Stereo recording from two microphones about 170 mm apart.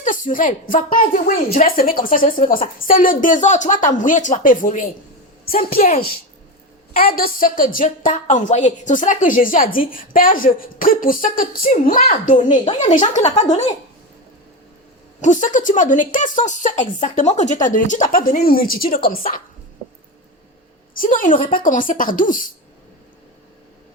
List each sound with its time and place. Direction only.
0.0 s a woman's voice: 50° left (ahead or behind)
15.2 s speech: 45° left (ahead or behind)
20.9 s speech: 55° left (ahead or behind)